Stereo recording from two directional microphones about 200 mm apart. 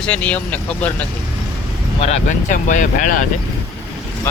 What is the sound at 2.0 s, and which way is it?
Speech, 35° left (ahead or behind).